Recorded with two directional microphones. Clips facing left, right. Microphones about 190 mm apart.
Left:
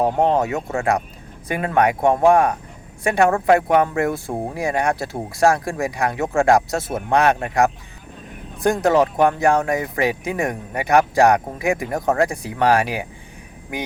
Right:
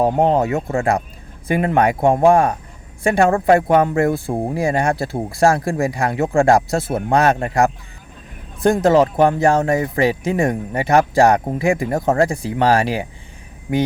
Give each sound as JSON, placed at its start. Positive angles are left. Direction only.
{"t": 0.2, "sound": "speech", "side_deg": -35}
{"t": 8.7, "sound": "speech", "side_deg": -30}